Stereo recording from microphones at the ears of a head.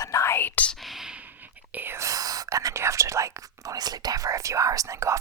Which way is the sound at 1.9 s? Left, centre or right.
Right.